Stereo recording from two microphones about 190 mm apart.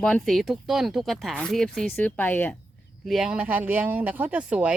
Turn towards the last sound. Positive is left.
turn(degrees=-5)  # may be behind; listen again after turning